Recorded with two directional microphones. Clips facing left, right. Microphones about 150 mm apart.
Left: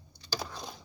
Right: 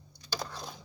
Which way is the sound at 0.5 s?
Centre (ahead or behind).